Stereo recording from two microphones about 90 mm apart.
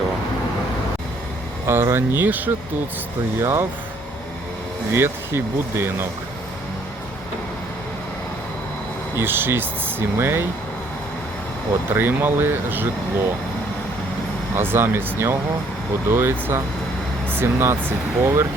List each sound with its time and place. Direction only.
1.6 s speech: 25° right (ahead or behind)
4.9 s speech: 25° right (ahead or behind)
9.1 s speech: 25° right (ahead or behind)
11.9 s speech: 25° right (ahead or behind)
14.5 s speech: 25° right (ahead or behind)